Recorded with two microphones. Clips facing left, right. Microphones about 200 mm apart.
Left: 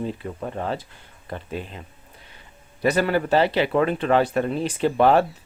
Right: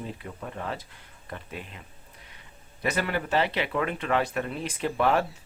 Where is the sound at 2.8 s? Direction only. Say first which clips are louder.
Left 8 dB; 35° left (ahead or behind).